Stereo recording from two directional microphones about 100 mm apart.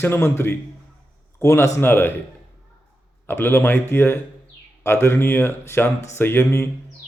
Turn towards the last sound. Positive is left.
turn(degrees=25)  # may be behind; listen again after turning